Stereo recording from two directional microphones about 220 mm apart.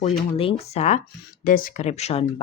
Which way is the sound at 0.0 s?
25° left (ahead or behind).